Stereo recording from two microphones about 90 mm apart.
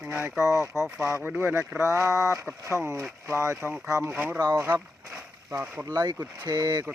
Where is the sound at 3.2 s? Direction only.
30° right (ahead or behind).